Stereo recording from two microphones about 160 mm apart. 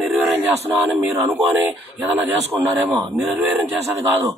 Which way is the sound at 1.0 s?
10° right (ahead or behind).